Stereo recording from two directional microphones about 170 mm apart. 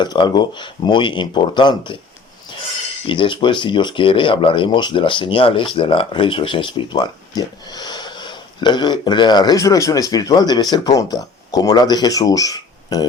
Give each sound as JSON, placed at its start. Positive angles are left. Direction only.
{"t": 0.0, "sound": "speech", "side_deg": 25}
{"t": 3.1, "sound": "speech", "side_deg": 30}